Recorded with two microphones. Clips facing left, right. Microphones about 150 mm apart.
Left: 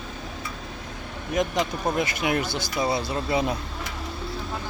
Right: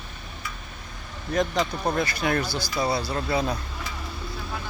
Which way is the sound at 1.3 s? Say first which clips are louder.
Even; 15° left (ahead or behind).